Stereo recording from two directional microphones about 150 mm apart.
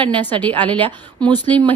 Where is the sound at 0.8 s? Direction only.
30° right (ahead or behind).